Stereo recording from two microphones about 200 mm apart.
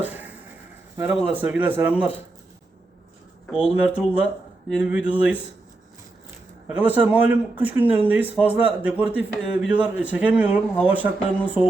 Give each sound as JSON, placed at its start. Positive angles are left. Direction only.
{"t": 0.0, "sound": "a sound", "side_deg": -10}
{"t": 0.9, "sound": "speech", "side_deg": -10}
{"t": 3.5, "sound": "speech", "side_deg": -5}
{"t": 6.7, "sound": "speech", "side_deg": -5}